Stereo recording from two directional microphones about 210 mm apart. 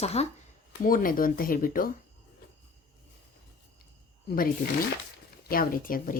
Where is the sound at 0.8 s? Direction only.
40° left (ahead or behind).